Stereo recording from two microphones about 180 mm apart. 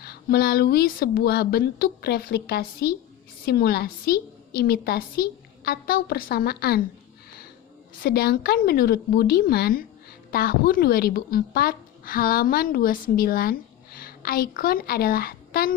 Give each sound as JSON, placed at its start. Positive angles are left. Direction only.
{"t": 0.0, "sound": "a woman's voice", "side_deg": 60}
{"t": 7.9, "sound": "a woman's voice", "side_deg": 60}